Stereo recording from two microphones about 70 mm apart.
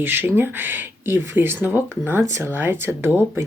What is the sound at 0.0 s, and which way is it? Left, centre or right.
Speech, right.